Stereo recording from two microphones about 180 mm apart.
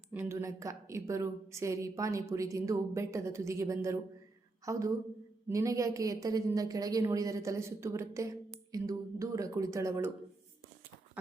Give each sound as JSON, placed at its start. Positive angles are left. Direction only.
{"t": 0.1, "sound": "a woman's voice", "side_deg": -15}